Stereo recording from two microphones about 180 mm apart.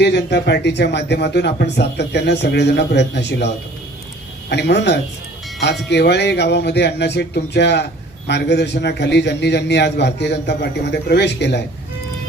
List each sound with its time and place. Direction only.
0.0 s speech: 70° left (ahead or behind)